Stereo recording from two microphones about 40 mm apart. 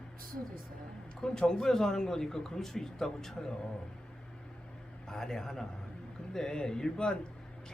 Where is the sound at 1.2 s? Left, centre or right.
Centre.